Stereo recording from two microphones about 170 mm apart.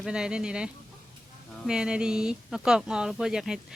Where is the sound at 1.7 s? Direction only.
5° right (ahead or behind).